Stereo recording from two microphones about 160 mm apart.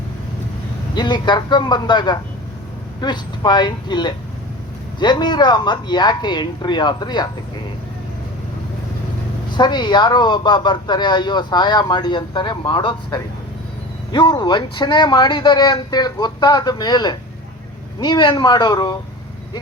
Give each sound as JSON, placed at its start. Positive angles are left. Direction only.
{"t": 0.9, "sound": "a man's voice", "side_deg": 25}
{"t": 9.5, "sound": "a man's voice", "side_deg": 25}